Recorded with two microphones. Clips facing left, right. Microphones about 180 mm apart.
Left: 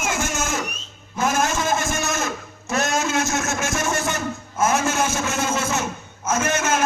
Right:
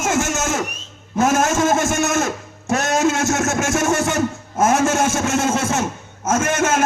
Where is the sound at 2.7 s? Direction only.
45° right (ahead or behind).